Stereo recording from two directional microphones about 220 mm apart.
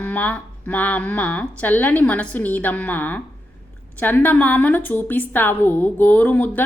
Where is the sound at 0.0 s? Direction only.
5° left (ahead or behind).